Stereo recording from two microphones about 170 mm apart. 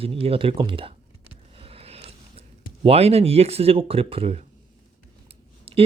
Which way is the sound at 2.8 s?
35° right (ahead or behind).